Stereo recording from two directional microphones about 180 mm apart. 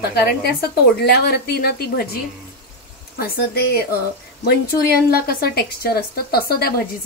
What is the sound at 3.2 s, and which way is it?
A woman's voice, 60° left (ahead or behind).